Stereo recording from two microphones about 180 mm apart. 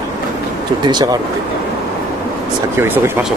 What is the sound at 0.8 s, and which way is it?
Speech, 20° right (ahead or behind).